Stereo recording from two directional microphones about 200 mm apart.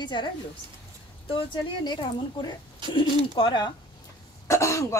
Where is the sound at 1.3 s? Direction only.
25° left (ahead or behind).